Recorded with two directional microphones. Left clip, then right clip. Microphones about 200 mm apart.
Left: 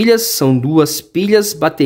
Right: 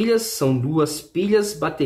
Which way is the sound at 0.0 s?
50° left (ahead or behind).